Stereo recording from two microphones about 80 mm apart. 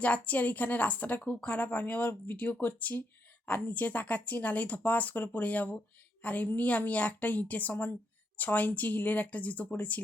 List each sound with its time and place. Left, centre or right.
0.0 s a woman's voice: centre